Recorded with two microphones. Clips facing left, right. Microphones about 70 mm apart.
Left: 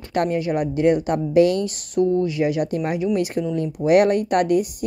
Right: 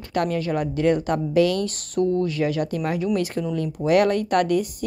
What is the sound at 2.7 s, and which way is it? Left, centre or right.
Speech, left.